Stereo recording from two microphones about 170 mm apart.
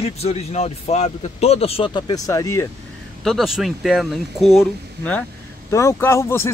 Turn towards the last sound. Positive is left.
turn(degrees=15)  # may be behind; listen again after turning